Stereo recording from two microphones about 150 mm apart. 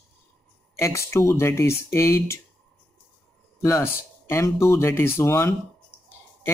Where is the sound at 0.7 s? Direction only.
20° left (ahead or behind).